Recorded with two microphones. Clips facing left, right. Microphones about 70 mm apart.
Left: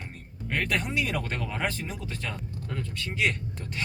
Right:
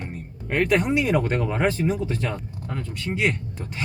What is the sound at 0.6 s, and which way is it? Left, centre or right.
Speech, right.